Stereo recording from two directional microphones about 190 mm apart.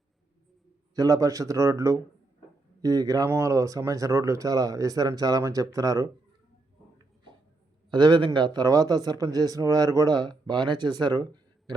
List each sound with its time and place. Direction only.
0.9 s speech: 15° right (ahead or behind)
7.9 s speech: 25° right (ahead or behind)